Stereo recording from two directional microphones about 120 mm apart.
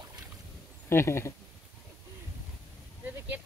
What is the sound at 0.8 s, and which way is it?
Speech, 20° left (ahead or behind).